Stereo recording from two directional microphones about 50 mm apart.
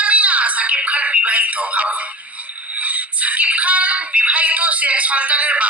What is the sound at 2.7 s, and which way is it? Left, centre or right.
Speech, right.